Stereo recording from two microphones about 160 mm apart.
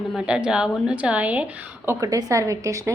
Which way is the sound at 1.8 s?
20° right (ahead or behind).